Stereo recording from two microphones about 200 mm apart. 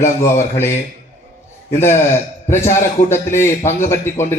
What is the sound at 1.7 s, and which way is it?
A man's voice, 10° left (ahead or behind).